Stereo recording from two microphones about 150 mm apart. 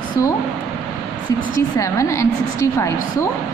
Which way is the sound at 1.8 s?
20° left (ahead or behind).